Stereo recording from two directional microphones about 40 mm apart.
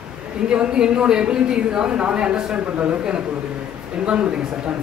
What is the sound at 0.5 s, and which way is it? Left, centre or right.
Speech, right.